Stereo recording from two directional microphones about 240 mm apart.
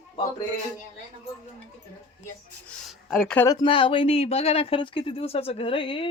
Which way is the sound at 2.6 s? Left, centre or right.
Centre.